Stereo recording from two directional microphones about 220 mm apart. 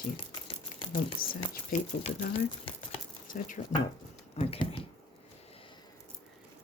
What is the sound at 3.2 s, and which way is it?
Speech, 35° left (ahead or behind).